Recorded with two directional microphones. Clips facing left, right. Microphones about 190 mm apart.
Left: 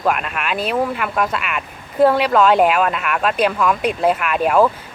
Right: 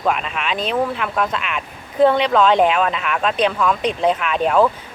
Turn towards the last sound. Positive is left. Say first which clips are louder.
# left 1 dB
turn(degrees=5)  # may be behind; listen again after turning